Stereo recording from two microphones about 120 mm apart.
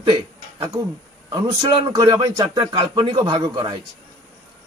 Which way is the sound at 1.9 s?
35° right (ahead or behind).